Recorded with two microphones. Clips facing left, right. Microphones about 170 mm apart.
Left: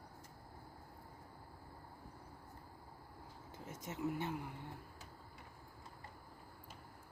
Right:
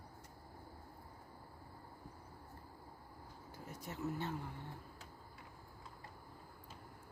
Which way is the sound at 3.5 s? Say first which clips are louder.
Left 1 dB; 20° left (ahead or behind).